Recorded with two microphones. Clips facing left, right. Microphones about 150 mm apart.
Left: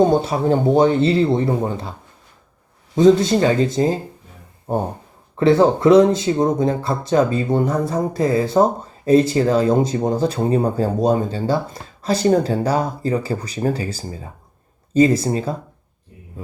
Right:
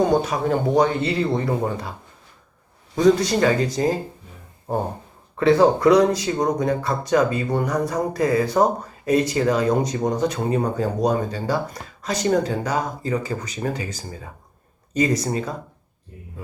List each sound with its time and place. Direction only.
0.0 s speech: 25° left (ahead or behind)
2.9 s speech: 25° left (ahead or behind)
5.4 s speech: 25° left (ahead or behind)